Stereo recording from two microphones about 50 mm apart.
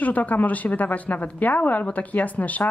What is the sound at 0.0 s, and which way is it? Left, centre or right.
Speech, left.